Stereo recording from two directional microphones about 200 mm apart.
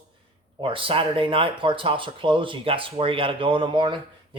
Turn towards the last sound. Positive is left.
turn(degrees=-25)  # may be behind; listen again after turning